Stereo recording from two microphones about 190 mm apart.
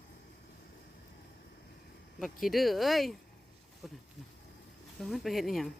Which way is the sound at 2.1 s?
Centre (ahead or behind).